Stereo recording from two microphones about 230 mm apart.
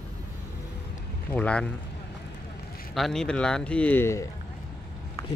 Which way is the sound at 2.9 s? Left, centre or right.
Centre.